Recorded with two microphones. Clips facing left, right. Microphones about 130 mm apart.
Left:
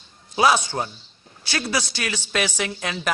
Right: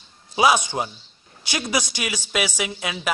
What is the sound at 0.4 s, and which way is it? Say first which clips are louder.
Speech: even; 15° right (ahead or behind).